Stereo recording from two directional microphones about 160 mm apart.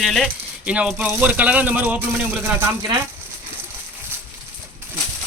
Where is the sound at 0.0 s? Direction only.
Centre (ahead or behind).